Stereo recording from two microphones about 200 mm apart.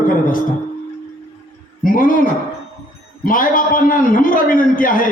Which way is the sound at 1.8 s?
45° left (ahead or behind).